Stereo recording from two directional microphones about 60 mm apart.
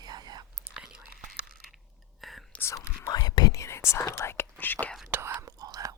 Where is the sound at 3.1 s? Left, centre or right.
Left.